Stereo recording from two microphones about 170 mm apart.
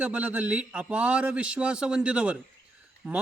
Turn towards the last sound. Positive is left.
turn(degrees=-5)  # may be behind; listen again after turning